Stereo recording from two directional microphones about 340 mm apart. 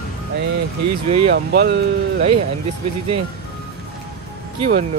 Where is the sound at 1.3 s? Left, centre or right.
Right.